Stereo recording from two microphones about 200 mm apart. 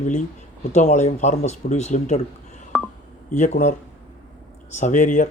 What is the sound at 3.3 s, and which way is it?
Speech, 35° left (ahead or behind).